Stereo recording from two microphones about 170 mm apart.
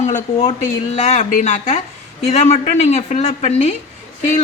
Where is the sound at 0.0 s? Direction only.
40° left (ahead or behind).